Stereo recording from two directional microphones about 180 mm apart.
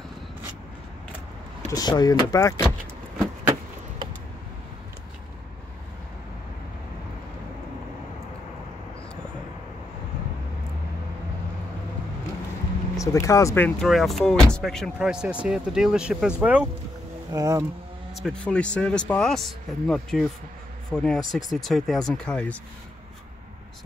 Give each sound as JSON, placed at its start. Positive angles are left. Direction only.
{"t": 1.7, "sound": "speech", "side_deg": 20}
{"t": 12.9, "sound": "speech", "side_deg": 20}
{"t": 17.3, "sound": "speech", "side_deg": -20}
{"t": 18.1, "sound": "speech", "side_deg": 5}